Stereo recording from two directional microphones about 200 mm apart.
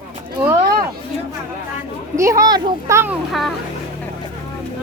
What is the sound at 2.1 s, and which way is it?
A child's voice, 15° right (ahead or behind).